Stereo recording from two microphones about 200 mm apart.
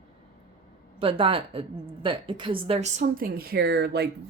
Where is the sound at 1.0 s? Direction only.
25° right (ahead or behind).